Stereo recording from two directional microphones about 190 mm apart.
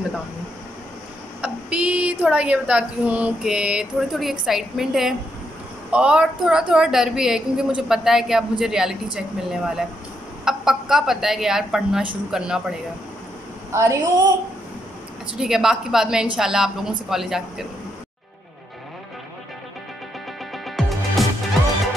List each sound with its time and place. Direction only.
1.4 s a woman's voice: 5° right (ahead or behind)
13.7 s a woman's voice: 15° right (ahead or behind)
15.3 s a woman's voice: centre (ahead or behind)
20.5 s music: centre (ahead or behind)